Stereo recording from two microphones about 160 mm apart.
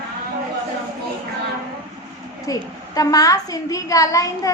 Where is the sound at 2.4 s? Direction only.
20° left (ahead or behind).